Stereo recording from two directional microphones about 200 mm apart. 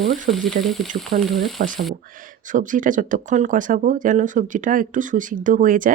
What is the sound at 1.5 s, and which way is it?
Speech, 40° right (ahead or behind).